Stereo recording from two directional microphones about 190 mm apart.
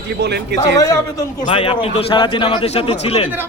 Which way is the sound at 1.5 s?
30° left (ahead or behind).